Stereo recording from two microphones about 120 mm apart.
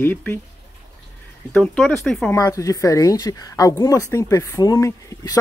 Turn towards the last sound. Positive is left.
turn(degrees=25)  # may be behind; listen again after turning